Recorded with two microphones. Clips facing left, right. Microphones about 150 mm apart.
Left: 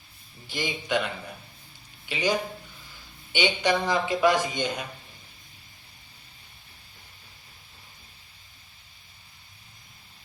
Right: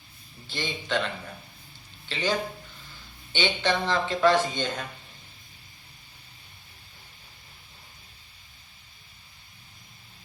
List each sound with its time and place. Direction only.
0.4 s speech: 10° left (ahead or behind)